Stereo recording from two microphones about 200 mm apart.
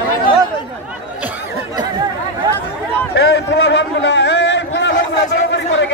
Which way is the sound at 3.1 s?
60° left (ahead or behind).